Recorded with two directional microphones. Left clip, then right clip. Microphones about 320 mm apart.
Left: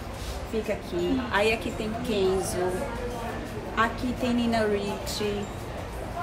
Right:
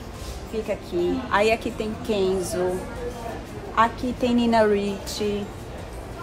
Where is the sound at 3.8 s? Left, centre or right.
Right.